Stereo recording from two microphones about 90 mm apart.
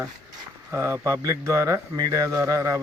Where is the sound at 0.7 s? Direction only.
30° right (ahead or behind).